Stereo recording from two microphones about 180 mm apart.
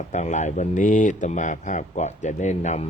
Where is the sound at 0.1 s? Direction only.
40° left (ahead or behind).